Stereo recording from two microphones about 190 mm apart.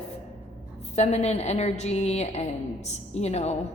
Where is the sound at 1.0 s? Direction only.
35° left (ahead or behind).